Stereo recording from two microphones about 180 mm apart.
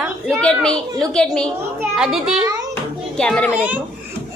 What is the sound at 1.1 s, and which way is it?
A woman's voice, 5° left (ahead or behind).